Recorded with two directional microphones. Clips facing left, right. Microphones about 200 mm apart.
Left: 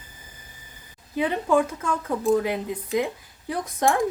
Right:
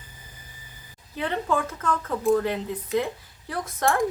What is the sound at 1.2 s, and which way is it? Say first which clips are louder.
Speech: left 5 dB; 10° left (ahead or behind).